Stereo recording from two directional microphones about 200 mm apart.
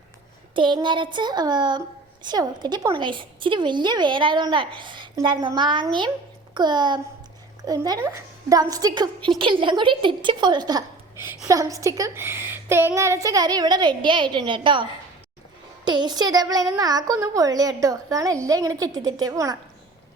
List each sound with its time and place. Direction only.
0.5 s a woman's voice: 25° right (ahead or behind)